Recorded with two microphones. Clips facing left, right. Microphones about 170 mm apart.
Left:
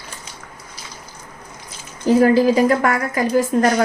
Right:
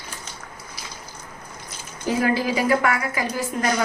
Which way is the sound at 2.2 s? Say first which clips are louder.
Left 7 dB; 40° left (ahead or behind).